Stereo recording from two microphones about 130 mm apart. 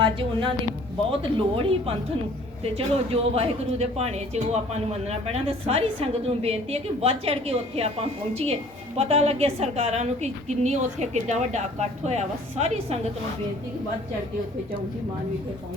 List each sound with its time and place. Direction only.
0.0 s a woman's voice: 40° right (ahead or behind)